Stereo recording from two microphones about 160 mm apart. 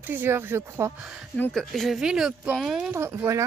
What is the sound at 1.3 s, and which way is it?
Speech, 5° left (ahead or behind).